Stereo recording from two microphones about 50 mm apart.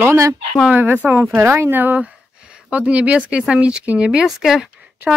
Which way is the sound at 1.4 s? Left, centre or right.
Right.